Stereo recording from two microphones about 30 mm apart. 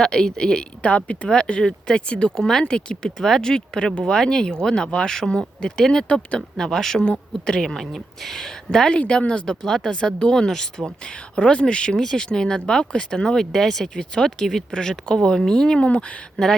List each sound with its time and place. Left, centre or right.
0.0 s speech: left
0.8 s speech: left
1.3 s speech: left
2.3 s speech: centre
2.6 s speech: left; by 8.4 s centre
8.9 s speech: left
9.6 s speech: centre
9.9 s speech: left
10.3 s speech: centre
11.3 s speech: left
11.9 s speech: centre
15.8 s speech: left